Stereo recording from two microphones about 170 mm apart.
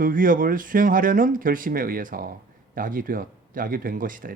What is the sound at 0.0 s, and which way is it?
Speech, 55° right (ahead or behind).